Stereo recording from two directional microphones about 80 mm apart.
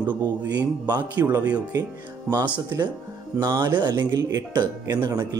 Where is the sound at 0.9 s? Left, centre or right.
Right.